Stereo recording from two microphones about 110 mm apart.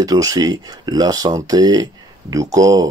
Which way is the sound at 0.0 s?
30° right (ahead or behind).